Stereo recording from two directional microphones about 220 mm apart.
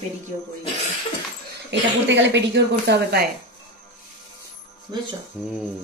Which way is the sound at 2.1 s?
55° right (ahead or behind).